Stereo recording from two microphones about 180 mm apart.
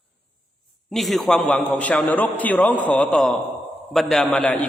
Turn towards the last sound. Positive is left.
turn(degrees=5)  # may be behind; listen again after turning